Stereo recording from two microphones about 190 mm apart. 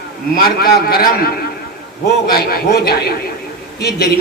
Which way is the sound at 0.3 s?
50° left (ahead or behind).